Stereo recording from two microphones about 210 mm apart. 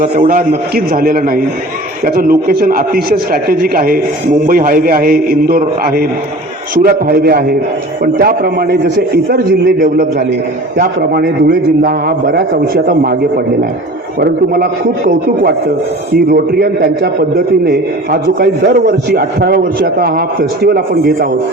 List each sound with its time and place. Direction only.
0.0 s a man's voice: 40° right (ahead or behind)